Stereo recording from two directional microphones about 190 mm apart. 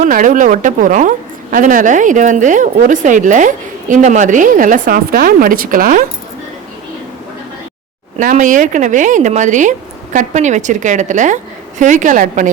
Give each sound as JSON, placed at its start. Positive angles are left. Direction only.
{"t": 0.0, "sound": "a woman's voice", "side_deg": -45}
{"t": 8.2, "sound": "a woman's voice", "side_deg": -40}